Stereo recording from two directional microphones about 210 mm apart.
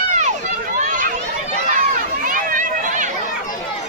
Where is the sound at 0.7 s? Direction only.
35° right (ahead or behind).